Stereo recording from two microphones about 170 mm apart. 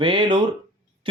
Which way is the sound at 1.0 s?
30° right (ahead or behind).